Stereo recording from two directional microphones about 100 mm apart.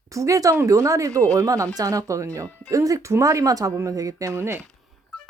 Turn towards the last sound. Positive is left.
turn(degrees=-25)  # may be behind; listen again after turning